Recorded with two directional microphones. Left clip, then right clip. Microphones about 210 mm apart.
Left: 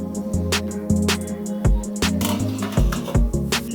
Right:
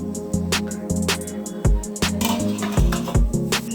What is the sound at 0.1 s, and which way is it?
Music, centre (ahead or behind).